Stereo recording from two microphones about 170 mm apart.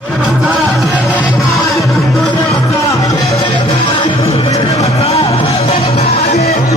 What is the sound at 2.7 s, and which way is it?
Music, 20° left (ahead or behind).